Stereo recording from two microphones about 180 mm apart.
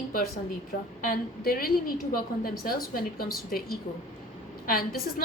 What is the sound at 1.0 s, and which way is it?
A woman's voice, 55° left (ahead or behind).